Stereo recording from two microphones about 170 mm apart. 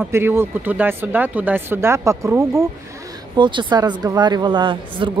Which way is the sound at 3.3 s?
30° right (ahead or behind).